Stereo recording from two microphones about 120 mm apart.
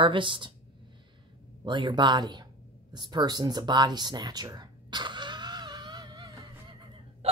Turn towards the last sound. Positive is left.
turn(degrees=-55)  # may be behind; listen again after turning